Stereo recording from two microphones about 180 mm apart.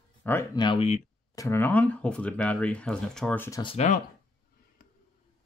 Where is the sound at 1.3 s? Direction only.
15° left (ahead or behind).